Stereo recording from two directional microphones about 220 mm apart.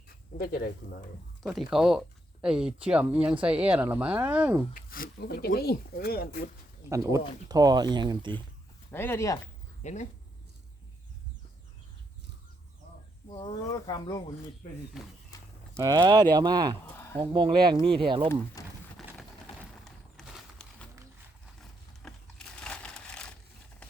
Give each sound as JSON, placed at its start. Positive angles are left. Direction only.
{"t": 0.3, "sound": "speech", "side_deg": 45}
{"t": 1.4, "sound": "speech", "side_deg": 0}
{"t": 4.7, "sound": "speech", "side_deg": 40}
{"t": 6.9, "sound": "speech", "side_deg": -15}
{"t": 8.9, "sound": "speech", "side_deg": 10}
{"t": 9.8, "sound": "speech", "side_deg": 30}
{"t": 13.2, "sound": "speech", "side_deg": 20}
{"t": 15.0, "sound": "speech", "side_deg": 0}
{"t": 15.3, "sound": "a sound", "side_deg": 15}
{"t": 15.8, "sound": "speech", "side_deg": -20}
{"t": 18.6, "sound": "a sound", "side_deg": 15}
{"t": 18.9, "sound": "a sound", "side_deg": 0}
{"t": 21.6, "sound": "sewing machine", "side_deg": 5}